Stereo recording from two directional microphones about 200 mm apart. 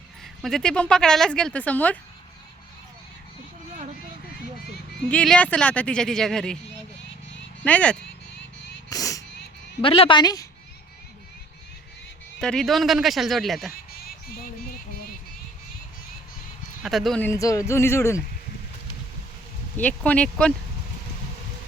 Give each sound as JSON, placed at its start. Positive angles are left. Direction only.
{"t": 0.4, "sound": "speech", "side_deg": 0}
{"t": 5.0, "sound": "speech", "side_deg": 5}
{"t": 7.6, "sound": "speech", "side_deg": 5}
{"t": 8.9, "sound": "a sound", "side_deg": 15}
{"t": 9.8, "sound": "a woman's voice", "side_deg": 25}
{"t": 12.4, "sound": "speech", "side_deg": 5}
{"t": 16.8, "sound": "speech", "side_deg": 0}
{"t": 19.7, "sound": "speech", "side_deg": 5}